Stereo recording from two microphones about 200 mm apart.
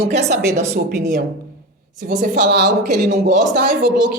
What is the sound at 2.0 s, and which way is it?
Speech, 45° right (ahead or behind).